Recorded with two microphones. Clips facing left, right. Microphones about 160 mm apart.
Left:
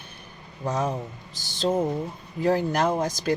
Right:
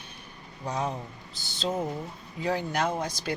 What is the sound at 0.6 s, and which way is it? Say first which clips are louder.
Speech: left 4 dB; 45° left (ahead or behind).